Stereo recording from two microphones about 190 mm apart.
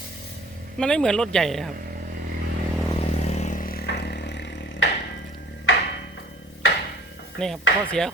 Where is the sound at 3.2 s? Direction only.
35° left (ahead or behind); by 4.9 s 65° left (ahead or behind).